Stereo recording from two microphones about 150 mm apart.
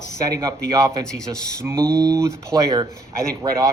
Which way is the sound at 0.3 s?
25° right (ahead or behind).